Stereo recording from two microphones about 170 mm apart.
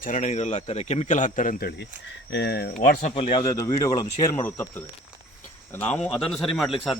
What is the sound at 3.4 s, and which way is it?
A man's voice, 20° left (ahead or behind).